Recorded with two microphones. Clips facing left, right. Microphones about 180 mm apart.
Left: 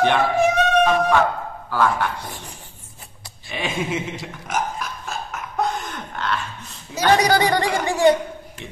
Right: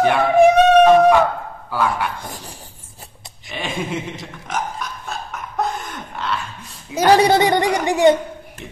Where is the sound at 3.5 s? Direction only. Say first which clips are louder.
Even; centre (ahead or behind).